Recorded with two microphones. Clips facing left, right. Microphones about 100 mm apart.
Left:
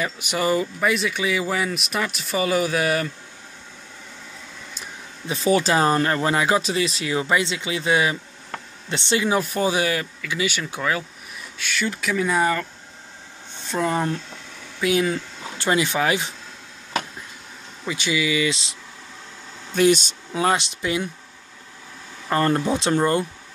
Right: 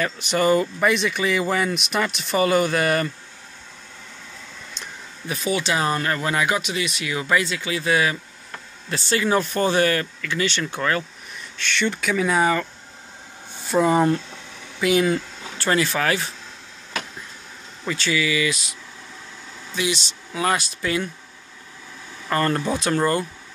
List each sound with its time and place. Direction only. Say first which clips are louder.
0.0 s speech: right 3 dB; 10° left (ahead or behind)
5.2 s speech: left 3 dB; 25° left (ahead or behind)
5.5 s speech: left 4 dB; 35° left (ahead or behind); by 12.6 s centre (ahead or behind)
13.7 s speech: right 5 dB; 5° right (ahead or behind)
15.5 s speech: even; 15° left (ahead or behind)
17.8 s speech: even; 15° left (ahead or behind)
19.7 s speech: left 8 dB; 50° left (ahead or behind)
20.3 s speech: left 2 dB; 25° left (ahead or behind)
22.3 s speech: left 2 dB; 20° left (ahead or behind)